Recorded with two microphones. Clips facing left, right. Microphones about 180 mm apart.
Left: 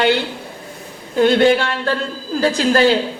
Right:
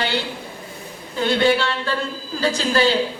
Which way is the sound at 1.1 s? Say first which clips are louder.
Left 6 dB; 55° left (ahead or behind).